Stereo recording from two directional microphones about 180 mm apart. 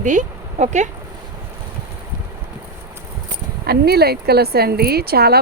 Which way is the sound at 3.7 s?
60° right (ahead or behind).